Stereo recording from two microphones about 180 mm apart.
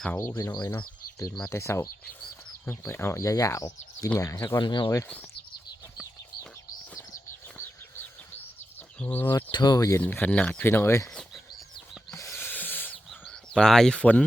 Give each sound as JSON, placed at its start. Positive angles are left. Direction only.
{"t": 0.2, "sound": "speech", "side_deg": 15}
{"t": 7.6, "sound": "bird flight", "side_deg": 15}
{"t": 9.0, "sound": "speech", "side_deg": 10}
{"t": 9.5, "sound": "speech", "side_deg": 25}
{"t": 12.1, "sound": "a sound", "side_deg": 15}